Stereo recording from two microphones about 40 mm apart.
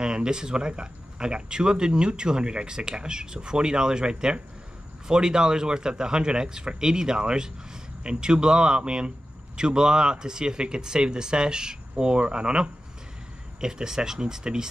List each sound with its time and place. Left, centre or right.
0.0 s speech: right